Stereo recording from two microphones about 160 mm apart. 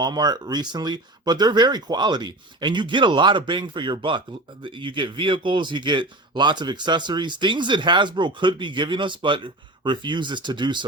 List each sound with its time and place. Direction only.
0.0 s a man's voice: 25° right (ahead or behind)